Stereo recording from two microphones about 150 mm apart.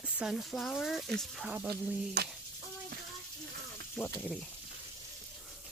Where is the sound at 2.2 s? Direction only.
90° right.